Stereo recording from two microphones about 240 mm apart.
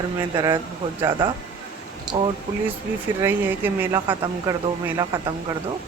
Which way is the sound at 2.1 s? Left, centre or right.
Centre.